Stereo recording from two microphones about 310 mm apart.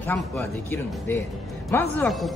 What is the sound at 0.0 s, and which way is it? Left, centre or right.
A man's voice, centre.